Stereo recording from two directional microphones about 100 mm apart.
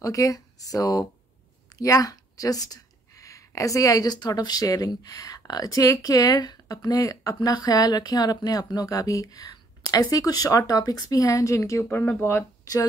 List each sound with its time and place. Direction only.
0.0 s speech: 35° left (ahead or behind)